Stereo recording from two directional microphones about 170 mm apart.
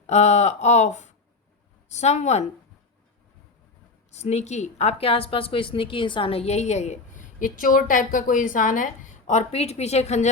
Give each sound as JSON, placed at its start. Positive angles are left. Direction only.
{"t": 0.1, "sound": "a woman's voice", "side_deg": 40}
{"t": 4.1, "sound": "a woman's voice", "side_deg": 40}